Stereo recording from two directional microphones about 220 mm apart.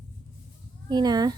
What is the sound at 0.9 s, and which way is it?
Speech, 20° right (ahead or behind).